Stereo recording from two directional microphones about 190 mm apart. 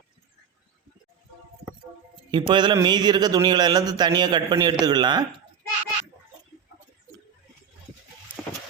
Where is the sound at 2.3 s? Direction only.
25° right (ahead or behind).